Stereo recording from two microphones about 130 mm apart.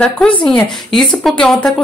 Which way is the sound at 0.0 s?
10° left (ahead or behind).